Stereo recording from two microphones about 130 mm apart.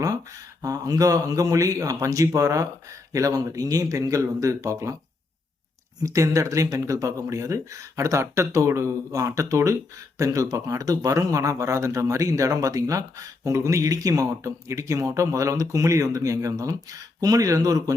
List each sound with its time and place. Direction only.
0.6 s speech: 25° right (ahead or behind)
6.0 s speech: 25° right (ahead or behind)